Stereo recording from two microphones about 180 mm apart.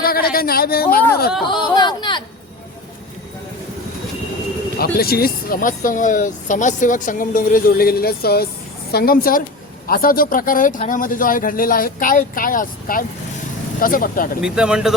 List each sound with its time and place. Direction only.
0.0 s speech: 55° left (ahead or behind)
1.7 s a sound: 25° left (ahead or behind)
4.8 s speech: 55° left (ahead or behind)
14.4 s speech: 5° right (ahead or behind)